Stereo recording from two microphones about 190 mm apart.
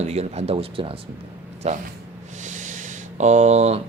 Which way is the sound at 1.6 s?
45° right (ahead or behind).